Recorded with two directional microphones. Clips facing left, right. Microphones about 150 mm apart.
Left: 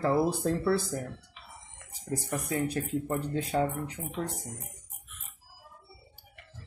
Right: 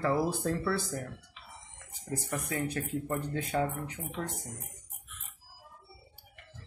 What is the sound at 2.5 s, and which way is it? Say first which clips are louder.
Speech: left 4 dB; 25° left (ahead or behind).